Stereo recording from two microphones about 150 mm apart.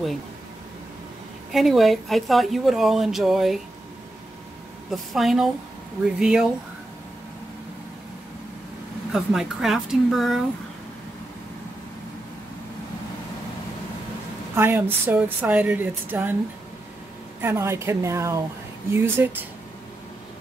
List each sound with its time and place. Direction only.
1.5 s speech: centre (ahead or behind)
4.9 s speech: centre (ahead or behind)
9.1 s speech: 5° right (ahead or behind)
14.5 s a woman's voice: 15° right (ahead or behind)
17.4 s a woman's voice: 15° right (ahead or behind)